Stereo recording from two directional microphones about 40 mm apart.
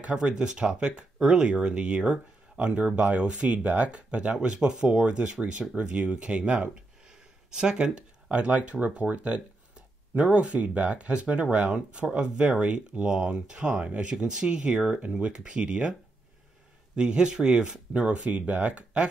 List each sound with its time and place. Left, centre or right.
0.1 s speech: right
6.7 s a sound: right
8.3 s speech: right
16.9 s speech: right